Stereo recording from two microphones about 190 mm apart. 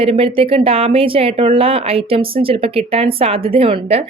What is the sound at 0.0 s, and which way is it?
Speech, 30° right (ahead or behind).